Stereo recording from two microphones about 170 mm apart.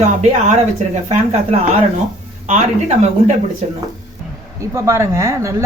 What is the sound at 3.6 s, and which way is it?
Speech, 40° right (ahead or behind).